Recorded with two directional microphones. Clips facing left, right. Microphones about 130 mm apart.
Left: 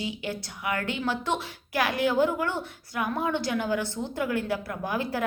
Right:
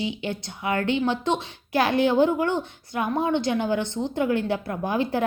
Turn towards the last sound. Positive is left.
turn(degrees=-25)  # may be behind; listen again after turning